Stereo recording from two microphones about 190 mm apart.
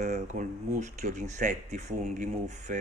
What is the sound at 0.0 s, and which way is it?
Speech, 40° right (ahead or behind).